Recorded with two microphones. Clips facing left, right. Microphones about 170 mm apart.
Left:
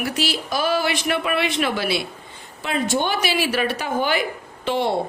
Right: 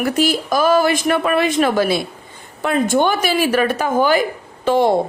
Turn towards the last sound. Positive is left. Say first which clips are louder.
# right 7 dB
turn(degrees=-45)  # may be behind; listen again after turning